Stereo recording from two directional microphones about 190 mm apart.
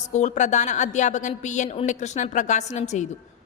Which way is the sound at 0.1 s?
40° left (ahead or behind).